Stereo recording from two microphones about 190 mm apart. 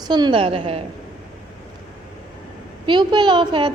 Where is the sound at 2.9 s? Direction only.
25° right (ahead or behind).